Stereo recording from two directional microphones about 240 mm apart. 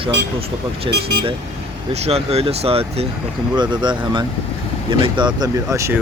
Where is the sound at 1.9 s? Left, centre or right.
Right.